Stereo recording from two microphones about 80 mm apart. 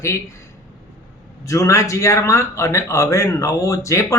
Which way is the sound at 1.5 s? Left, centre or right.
Left.